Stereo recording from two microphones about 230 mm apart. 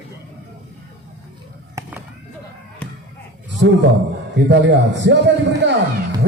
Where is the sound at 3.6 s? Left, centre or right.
Right.